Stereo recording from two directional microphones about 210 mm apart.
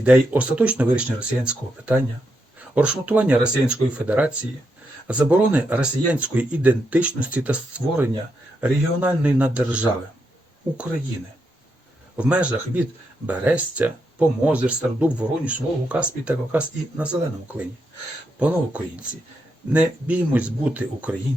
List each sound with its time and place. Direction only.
0.0 s speech: 5° right (ahead or behind)
12.1 s speech: 5° right (ahead or behind)
18.3 s speech: 5° right (ahead or behind)